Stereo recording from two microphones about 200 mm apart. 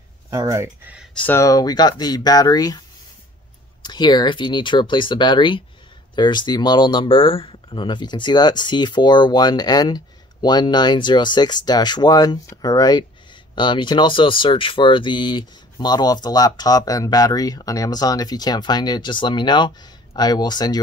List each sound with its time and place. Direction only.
0.3 s speech: 15° right (ahead or behind)
1.1 s speech: 10° left (ahead or behind)
3.8 s speech: 20° left (ahead or behind)